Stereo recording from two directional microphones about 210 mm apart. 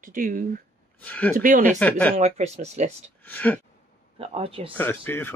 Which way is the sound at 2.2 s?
30° right (ahead or behind).